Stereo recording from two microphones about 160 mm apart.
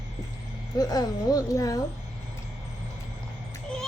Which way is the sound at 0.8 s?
25° left (ahead or behind).